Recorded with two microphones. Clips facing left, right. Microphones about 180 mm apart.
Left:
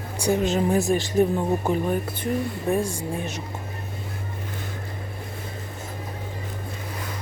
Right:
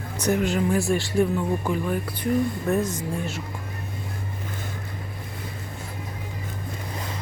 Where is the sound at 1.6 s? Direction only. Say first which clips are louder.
Left 2 dB; 40° left (ahead or behind).